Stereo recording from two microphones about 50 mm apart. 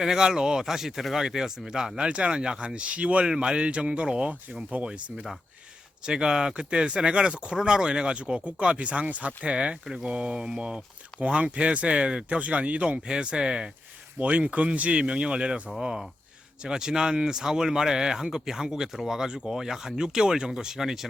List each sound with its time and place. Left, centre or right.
0.0 s speech: centre
6.1 s speech: centre
13.1 s speech: centre
14.2 s speech: right; by 21.1 s centre